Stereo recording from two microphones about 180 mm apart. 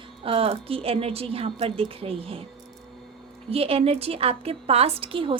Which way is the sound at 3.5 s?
30° right (ahead or behind).